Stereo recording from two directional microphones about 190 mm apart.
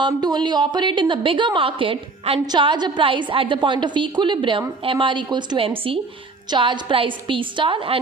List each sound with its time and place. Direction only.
0.0 s a woman's voice: 20° right (ahead or behind)